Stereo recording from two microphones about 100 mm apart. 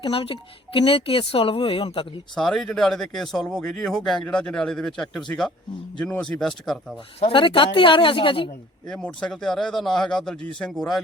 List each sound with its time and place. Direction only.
0.0 s speech: 65° left (ahead or behind)
2.3 s speech: 5° left (ahead or behind)
7.2 s speech: 65° left (ahead or behind)
8.9 s speech: 5° left (ahead or behind)